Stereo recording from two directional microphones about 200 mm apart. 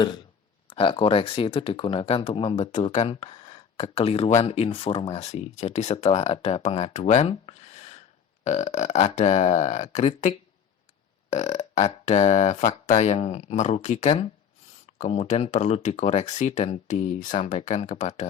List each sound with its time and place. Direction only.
0.7 s speech: 25° left (ahead or behind)